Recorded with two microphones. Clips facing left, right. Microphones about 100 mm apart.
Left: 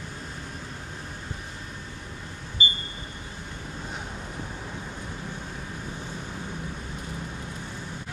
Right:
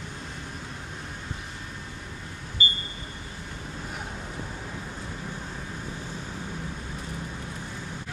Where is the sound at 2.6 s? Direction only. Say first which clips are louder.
Left 1 dB; 20° left (ahead or behind).